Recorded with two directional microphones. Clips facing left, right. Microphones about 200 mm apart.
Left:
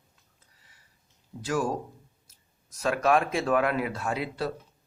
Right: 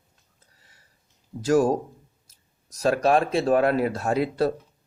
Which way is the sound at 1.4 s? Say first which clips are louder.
Right 8 dB; 40° right (ahead or behind).